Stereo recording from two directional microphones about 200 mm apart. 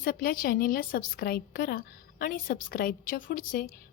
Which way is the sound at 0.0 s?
45° left (ahead or behind).